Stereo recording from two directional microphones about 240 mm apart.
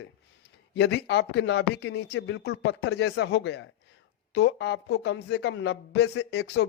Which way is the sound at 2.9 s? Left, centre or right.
Left.